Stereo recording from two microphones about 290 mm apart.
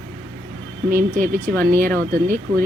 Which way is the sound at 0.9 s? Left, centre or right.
Right.